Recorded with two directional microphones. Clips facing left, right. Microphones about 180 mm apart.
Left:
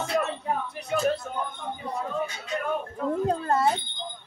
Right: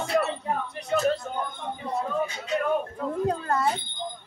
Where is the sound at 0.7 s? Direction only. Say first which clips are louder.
Right 2 dB; 5° left (ahead or behind).